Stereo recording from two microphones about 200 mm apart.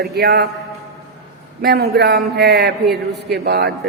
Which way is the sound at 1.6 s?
55° right (ahead or behind).